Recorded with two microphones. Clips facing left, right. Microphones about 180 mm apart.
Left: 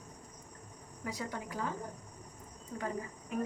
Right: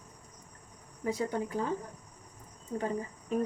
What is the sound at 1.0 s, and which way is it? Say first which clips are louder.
Speech: right 8 dB; 25° right (ahead or behind).